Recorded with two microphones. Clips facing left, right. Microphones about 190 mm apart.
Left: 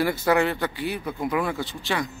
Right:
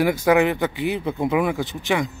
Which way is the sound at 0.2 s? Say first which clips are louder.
Right 4 dB; 15° right (ahead or behind).